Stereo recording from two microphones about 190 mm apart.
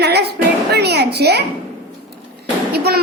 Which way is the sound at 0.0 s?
60° right (ahead or behind).